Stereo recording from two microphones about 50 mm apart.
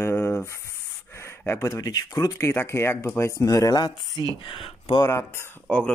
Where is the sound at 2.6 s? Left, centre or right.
Left.